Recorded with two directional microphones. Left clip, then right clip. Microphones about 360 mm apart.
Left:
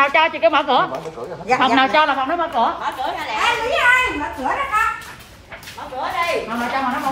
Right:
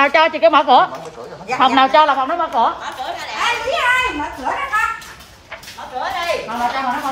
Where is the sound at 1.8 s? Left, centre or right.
Centre.